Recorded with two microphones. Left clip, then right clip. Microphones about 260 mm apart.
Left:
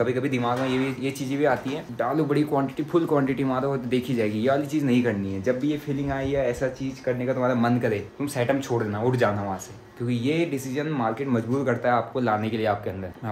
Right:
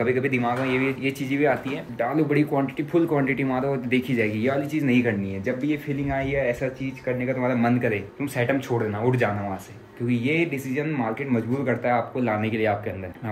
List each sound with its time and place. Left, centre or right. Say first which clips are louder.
0.0 s speech: right 2 dB; centre